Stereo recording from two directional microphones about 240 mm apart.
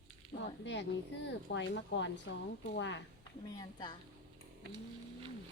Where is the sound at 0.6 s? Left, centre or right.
Left.